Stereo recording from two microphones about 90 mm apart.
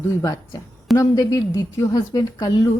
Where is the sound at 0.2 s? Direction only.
40° left (ahead or behind).